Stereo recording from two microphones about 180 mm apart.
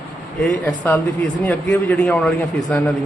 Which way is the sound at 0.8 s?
10° left (ahead or behind).